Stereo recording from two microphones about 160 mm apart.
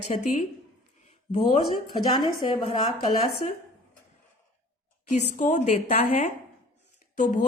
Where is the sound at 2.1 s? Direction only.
30° left (ahead or behind).